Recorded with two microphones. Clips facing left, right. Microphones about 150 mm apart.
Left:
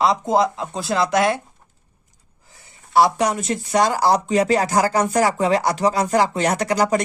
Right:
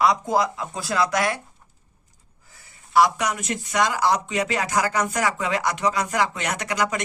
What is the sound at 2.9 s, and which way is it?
Speech, 30° left (ahead or behind).